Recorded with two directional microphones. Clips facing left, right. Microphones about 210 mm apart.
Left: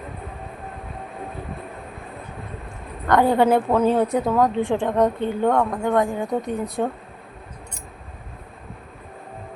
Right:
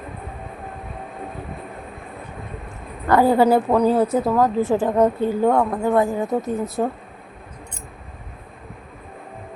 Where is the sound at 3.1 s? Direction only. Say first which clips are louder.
Right 2 dB; 5° right (ahead or behind).